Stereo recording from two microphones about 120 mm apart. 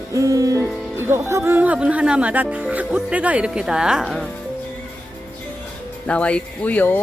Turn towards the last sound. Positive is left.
turn(degrees=15)  # may be behind; listen again after turning